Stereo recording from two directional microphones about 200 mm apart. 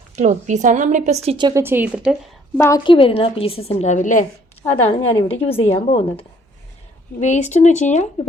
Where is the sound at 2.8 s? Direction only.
25° left (ahead or behind).